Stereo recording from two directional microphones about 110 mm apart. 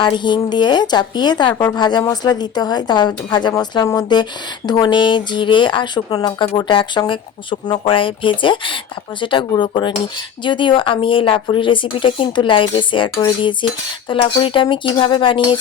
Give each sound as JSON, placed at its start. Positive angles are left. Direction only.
{"t": 0.0, "sound": "speech", "side_deg": 45}